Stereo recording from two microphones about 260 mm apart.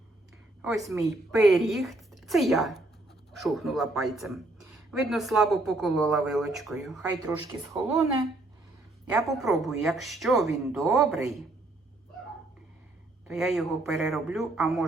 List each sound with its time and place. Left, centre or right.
0.6 s speech: centre
7.7 s a woman's voice: centre
9.0 s speech: centre
13.2 s speech: centre